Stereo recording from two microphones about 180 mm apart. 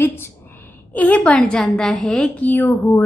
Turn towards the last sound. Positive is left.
turn(degrees=10)  # may be behind; listen again after turning